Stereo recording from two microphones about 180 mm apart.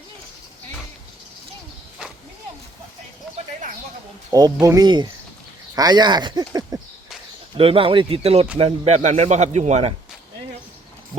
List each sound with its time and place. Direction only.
4.3 s speech: 20° right (ahead or behind)
7.5 s speech: 30° right (ahead or behind)